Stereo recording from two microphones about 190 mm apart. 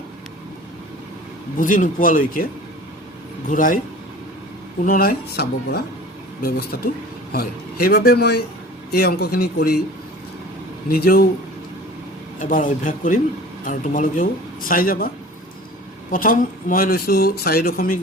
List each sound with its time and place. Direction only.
1.5 s speech: 45° left (ahead or behind)
3.5 s speech: 45° left (ahead or behind)
4.8 s speech: 50° left (ahead or behind)
10.8 s speech: 50° left (ahead or behind)
12.4 s speech: 45° left (ahead or behind)
16.1 s speech: 45° left (ahead or behind)